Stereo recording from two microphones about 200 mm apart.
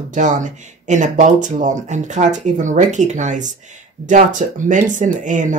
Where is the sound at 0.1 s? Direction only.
40° right (ahead or behind).